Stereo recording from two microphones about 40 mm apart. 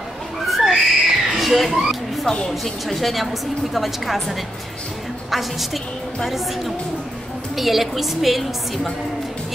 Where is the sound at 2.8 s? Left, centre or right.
Centre.